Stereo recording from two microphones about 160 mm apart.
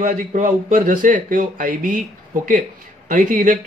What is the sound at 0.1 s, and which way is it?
Speech, 50° right (ahead or behind).